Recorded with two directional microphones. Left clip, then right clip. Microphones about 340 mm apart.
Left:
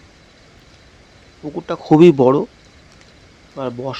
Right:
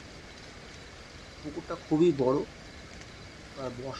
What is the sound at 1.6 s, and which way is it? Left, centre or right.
Speech, left.